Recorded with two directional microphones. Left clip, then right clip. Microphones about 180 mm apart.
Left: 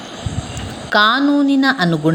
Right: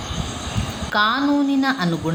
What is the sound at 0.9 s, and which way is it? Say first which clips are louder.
A woman's voice: left 5 dB; 30° left (ahead or behind).